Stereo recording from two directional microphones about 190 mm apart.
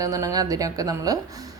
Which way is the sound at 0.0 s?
15° right (ahead or behind).